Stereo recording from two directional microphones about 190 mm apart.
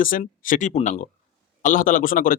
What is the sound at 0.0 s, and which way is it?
A man's voice, 45° left (ahead or behind).